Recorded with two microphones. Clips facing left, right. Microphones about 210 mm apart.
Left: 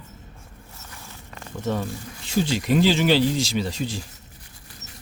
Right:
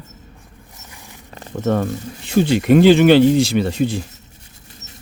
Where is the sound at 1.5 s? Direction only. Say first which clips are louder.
Right 8 dB; 55° right (ahead or behind).